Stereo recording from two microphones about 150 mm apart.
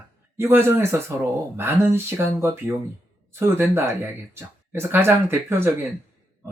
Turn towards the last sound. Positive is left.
turn(degrees=-15)  # may be behind; listen again after turning